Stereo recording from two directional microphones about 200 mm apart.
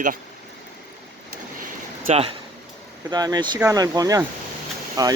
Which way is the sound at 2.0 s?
30° right (ahead or behind).